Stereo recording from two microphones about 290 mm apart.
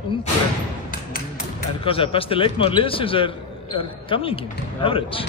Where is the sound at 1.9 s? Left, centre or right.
Centre.